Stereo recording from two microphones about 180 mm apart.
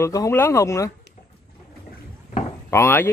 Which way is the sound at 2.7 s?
15° left (ahead or behind).